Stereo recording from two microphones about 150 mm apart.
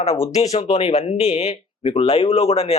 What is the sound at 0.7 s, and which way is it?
Speech, 45° left (ahead or behind).